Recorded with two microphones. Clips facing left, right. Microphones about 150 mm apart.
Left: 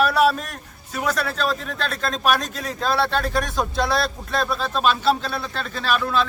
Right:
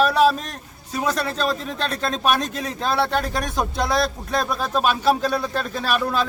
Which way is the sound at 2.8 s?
20° right (ahead or behind).